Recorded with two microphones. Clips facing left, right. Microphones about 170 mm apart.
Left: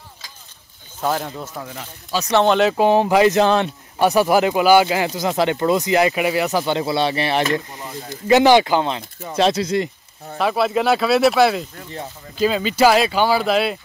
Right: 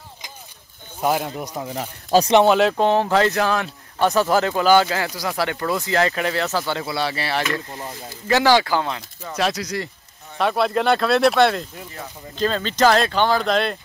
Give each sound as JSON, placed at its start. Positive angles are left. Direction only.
{"t": 1.0, "sound": "speech", "side_deg": -10}
{"t": 2.4, "sound": "speech", "side_deg": -5}
{"t": 2.8, "sound": "speech", "side_deg": 15}
{"t": 4.0, "sound": "speech", "side_deg": 10}
{"t": 10.3, "sound": "speech", "side_deg": 0}